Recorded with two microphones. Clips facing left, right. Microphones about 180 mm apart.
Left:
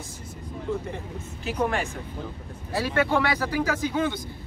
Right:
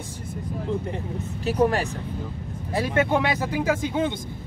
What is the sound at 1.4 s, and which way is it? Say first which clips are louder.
Speech: right 5 dB; 35° right (ahead or behind).